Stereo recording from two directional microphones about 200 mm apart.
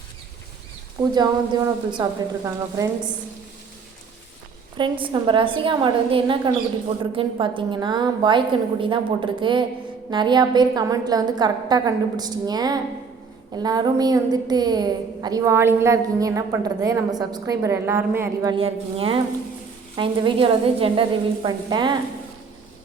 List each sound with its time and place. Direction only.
1.1 s a woman's voice: 20° right (ahead or behind)
4.8 s a woman's voice: 25° right (ahead or behind)
18.5 s a woman's voice: 30° right (ahead or behind)